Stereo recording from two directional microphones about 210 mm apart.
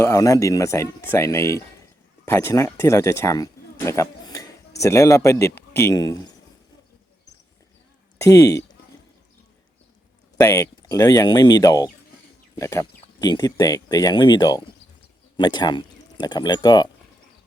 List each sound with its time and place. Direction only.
0.0 s speech: 15° left (ahead or behind)
8.2 s speech: 15° left (ahead or behind)
10.3 s speech: 15° left (ahead or behind)